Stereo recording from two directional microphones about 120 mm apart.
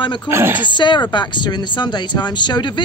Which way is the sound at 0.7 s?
40° left (ahead or behind).